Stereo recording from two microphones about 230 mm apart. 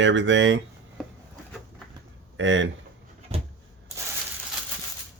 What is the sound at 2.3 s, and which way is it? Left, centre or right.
Speech, right.